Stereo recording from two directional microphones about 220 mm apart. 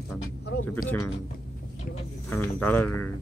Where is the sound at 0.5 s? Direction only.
45° left (ahead or behind).